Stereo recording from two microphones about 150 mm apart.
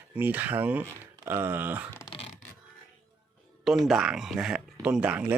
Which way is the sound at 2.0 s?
40° left (ahead or behind).